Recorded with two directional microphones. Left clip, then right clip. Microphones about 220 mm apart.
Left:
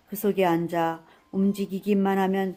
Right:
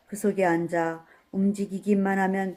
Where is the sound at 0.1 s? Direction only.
55° left (ahead or behind).